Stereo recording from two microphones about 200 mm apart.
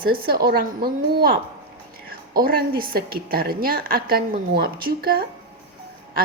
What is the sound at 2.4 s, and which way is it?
A woman's voice, 45° right (ahead or behind).